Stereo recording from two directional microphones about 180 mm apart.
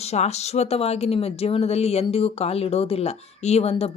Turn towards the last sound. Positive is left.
turn(degrees=35)  # may be behind; listen again after turning